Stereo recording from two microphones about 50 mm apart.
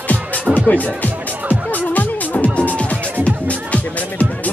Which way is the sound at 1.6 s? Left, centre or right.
Left.